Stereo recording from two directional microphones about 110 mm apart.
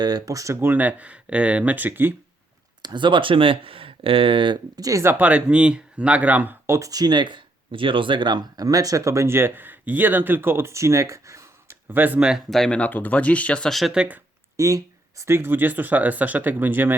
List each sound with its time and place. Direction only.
0.0 s speech: 35° right (ahead or behind); by 2.1 s 20° right (ahead or behind)
2.8 s speech: 45° right (ahead or behind); by 5.1 s 30° right (ahead or behind)
5.1 s speech: 15° right (ahead or behind)
6.7 s speech: 30° right (ahead or behind); by 12.4 s 10° right (ahead or behind)
12.5 s speech: 5° left (ahead or behind)
14.5 s speech: 30° right (ahead or behind)